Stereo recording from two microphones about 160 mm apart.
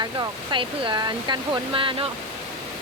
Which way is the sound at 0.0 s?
30° right (ahead or behind).